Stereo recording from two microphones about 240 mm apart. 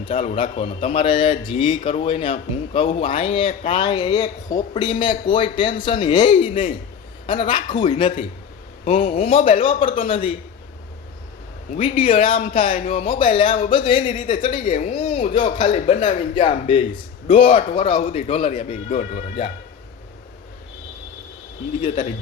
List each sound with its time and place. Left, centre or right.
0.0 s a man's voice: left
11.7 s a man's voice: left
21.8 s a man's voice: centre